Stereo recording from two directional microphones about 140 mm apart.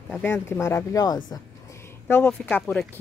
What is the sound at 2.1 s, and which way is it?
Speech, 10° left (ahead or behind).